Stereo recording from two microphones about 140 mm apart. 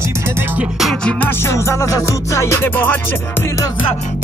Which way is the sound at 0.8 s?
5° left (ahead or behind).